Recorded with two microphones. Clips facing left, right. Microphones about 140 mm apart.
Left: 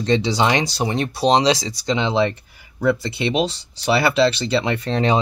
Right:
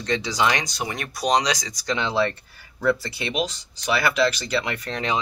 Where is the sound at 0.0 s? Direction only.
25° left (ahead or behind).